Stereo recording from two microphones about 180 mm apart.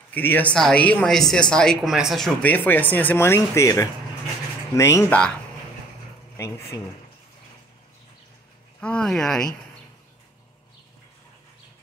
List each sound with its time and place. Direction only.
0.1 s speech: 10° left (ahead or behind)
6.3 s speech: 15° left (ahead or behind)
8.8 s speech: 5° left (ahead or behind)